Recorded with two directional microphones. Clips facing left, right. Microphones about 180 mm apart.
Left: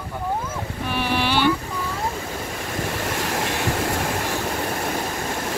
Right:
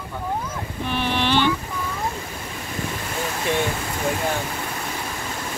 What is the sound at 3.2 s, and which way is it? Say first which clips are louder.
Waves: right 5 dB; 75° left (ahead or behind).